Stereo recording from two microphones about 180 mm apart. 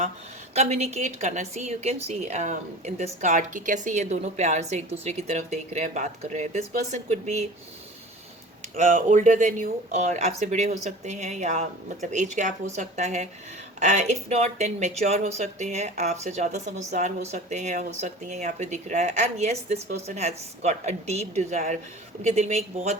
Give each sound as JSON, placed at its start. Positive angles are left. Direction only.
{"t": 0.5, "sound": "speech", "side_deg": -35}
{"t": 8.7, "sound": "speech", "side_deg": -50}